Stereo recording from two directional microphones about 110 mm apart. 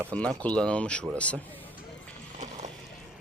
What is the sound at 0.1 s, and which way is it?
Speech, 10° left (ahead or behind).